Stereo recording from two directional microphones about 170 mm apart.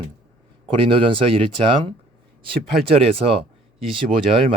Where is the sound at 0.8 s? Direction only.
30° right (ahead or behind).